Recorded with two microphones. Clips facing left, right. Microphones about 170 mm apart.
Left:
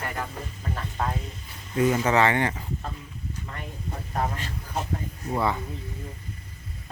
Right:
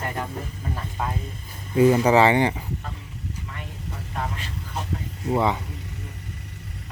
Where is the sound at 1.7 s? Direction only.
30° right (ahead or behind).